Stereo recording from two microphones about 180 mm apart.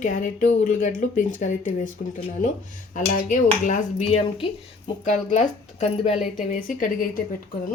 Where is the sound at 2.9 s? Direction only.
45° left (ahead or behind).